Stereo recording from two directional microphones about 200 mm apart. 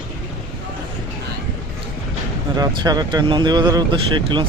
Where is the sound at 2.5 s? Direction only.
20° right (ahead or behind).